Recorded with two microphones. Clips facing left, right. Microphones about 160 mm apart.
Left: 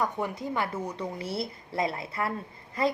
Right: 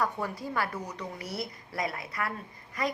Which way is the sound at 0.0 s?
20° left (ahead or behind).